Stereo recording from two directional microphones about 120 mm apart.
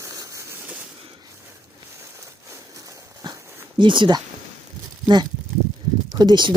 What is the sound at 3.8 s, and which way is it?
Speech, 40° right (ahead or behind).